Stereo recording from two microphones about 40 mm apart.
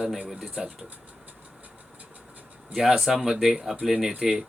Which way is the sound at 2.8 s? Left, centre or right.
Centre.